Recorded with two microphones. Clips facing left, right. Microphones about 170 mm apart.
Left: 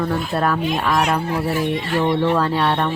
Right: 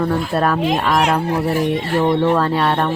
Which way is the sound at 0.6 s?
70° right (ahead or behind).